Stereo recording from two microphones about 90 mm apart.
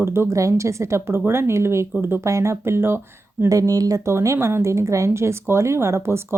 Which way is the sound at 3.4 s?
40° right (ahead or behind).